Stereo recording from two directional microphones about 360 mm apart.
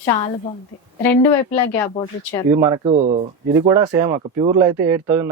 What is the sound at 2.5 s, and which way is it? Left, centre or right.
Speech, centre.